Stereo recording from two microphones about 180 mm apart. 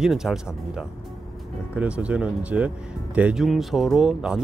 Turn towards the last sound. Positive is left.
turn(degrees=-5)  # may be behind; listen again after turning